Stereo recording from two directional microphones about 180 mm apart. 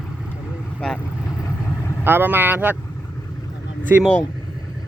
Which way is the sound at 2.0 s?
10° right (ahead or behind).